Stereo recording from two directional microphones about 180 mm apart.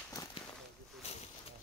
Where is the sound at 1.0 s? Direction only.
35° left (ahead or behind).